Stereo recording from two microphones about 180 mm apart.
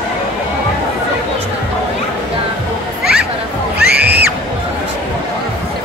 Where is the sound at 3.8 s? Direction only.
65° right (ahead or behind).